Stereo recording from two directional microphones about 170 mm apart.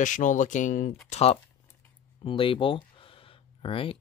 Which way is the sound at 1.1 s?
35° left (ahead or behind).